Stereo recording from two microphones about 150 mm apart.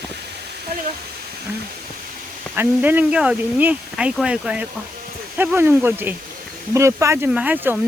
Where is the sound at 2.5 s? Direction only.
10° right (ahead or behind).